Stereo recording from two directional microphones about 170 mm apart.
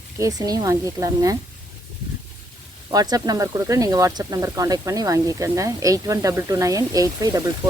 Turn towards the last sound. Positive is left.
turn(degrees=-20)  # may be behind; listen again after turning